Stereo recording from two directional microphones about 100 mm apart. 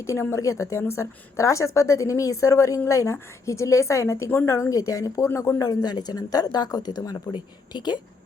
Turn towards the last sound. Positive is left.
turn(degrees=50)  # may be behind; listen again after turning